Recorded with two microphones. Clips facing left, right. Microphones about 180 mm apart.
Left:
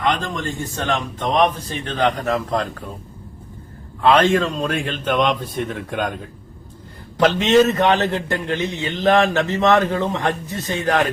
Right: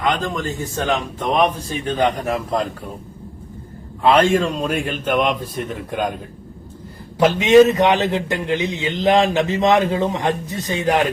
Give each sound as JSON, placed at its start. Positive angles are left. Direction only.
{"t": 0.0, "sound": "a man's voice", "side_deg": 0}
{"t": 4.0, "sound": "a man's voice", "side_deg": -10}
{"t": 7.2, "sound": "a man's voice", "side_deg": -10}